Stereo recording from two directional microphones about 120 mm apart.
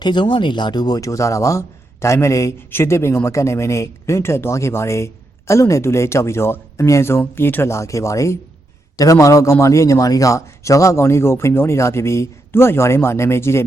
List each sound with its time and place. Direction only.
0.0 s speech: 40° left (ahead or behind); by 13.7 s 20° left (ahead or behind)